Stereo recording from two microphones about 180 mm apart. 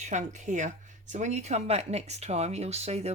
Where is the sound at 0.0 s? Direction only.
40° right (ahead or behind).